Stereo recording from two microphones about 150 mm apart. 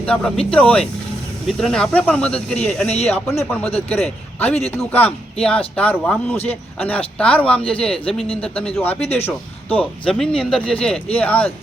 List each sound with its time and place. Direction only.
0.0 s speech: 5° left (ahead or behind)
3.2 s speech: 20° left (ahead or behind)